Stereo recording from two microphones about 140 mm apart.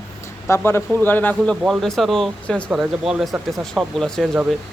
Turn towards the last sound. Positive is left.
turn(degrees=0)  # may be behind; listen again after turning